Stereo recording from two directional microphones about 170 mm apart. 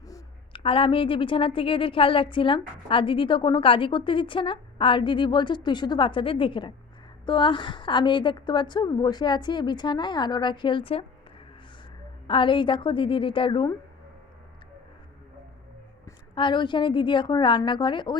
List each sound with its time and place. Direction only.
0.1 s a woman's voice: 30° left (ahead or behind)
12.3 s a woman's voice: 30° left (ahead or behind)
16.0 s a woman's voice: 30° left (ahead or behind)